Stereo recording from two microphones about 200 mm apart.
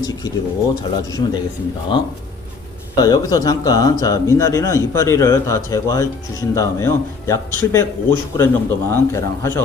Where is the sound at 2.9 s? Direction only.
20° left (ahead or behind).